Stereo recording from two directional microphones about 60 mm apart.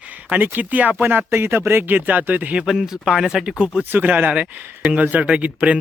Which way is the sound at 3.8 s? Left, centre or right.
Right.